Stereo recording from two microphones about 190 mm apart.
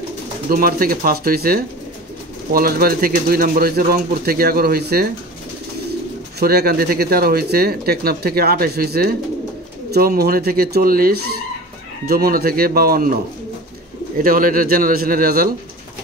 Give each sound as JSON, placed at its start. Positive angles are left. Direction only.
{"t": 0.5, "sound": "speech", "side_deg": -50}
{"t": 6.4, "sound": "speech", "side_deg": -55}